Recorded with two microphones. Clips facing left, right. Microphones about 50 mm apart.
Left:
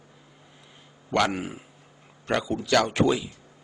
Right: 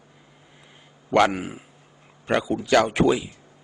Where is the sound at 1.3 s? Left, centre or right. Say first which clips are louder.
Right 1 dB; centre.